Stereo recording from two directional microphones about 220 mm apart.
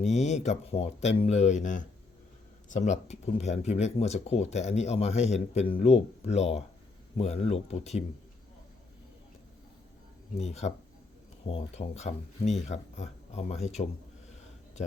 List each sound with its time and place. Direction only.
0.0 s speech: 30° left (ahead or behind)
10.3 s speech: 30° left (ahead or behind)